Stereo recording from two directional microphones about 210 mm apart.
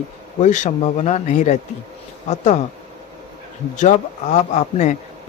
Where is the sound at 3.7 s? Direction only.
35° left (ahead or behind).